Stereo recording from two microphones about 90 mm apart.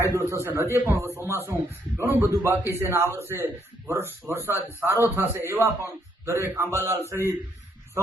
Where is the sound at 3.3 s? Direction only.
25° right (ahead or behind).